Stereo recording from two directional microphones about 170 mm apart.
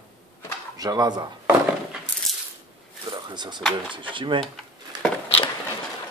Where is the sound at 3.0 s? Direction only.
25° right (ahead or behind).